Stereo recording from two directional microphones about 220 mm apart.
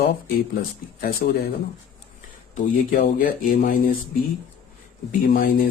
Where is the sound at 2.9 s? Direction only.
40° left (ahead or behind).